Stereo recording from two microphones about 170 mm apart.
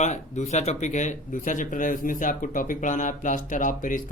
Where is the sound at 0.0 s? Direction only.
45° left (ahead or behind).